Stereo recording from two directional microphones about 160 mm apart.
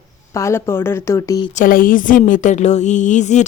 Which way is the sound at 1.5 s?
55° left (ahead or behind).